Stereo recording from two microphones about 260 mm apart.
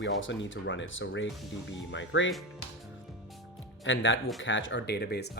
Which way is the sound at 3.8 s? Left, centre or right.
Left.